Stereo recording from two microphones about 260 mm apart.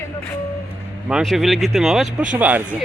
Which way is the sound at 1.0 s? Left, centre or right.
Centre.